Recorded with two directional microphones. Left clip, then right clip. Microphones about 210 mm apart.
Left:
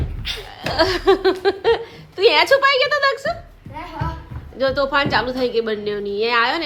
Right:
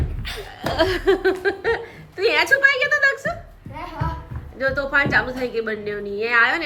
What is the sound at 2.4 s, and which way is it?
Speech, 5° left (ahead or behind).